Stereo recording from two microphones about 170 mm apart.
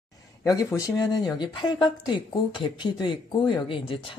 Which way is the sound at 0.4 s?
20° left (ahead or behind).